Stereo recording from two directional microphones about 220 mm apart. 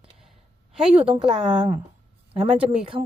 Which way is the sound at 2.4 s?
25° right (ahead or behind).